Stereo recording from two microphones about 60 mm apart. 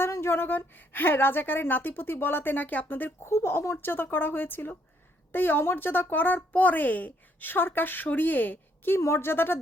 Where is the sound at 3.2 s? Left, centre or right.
Left.